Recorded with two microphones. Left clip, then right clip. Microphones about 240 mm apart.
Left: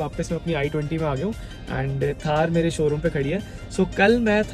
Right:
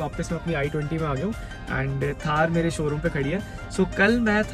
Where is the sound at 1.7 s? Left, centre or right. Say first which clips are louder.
Left 2 dB; centre.